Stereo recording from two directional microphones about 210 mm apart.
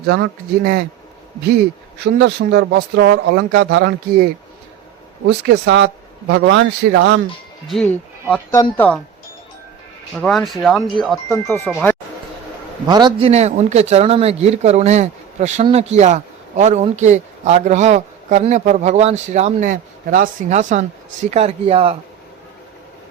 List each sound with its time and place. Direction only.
0.1 s speech: 45° right (ahead or behind)
2.0 s speech: 50° right (ahead or behind)
5.3 s a man's voice: 55° right (ahead or behind)
7.7 s speech: 5° left (ahead or behind)
10.2 s speech: centre (ahead or behind)
12.9 s speech: 20° right (ahead or behind)